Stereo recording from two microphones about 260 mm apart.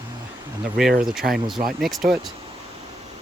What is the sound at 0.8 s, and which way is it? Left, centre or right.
Speech, centre.